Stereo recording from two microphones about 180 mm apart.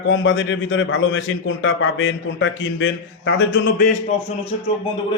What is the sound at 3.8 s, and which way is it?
Speech, 40° left (ahead or behind).